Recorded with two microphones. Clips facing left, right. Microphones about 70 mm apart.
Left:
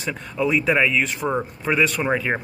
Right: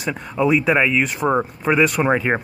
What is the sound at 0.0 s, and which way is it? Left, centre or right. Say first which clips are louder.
A man's voice: right 4 dB; centre.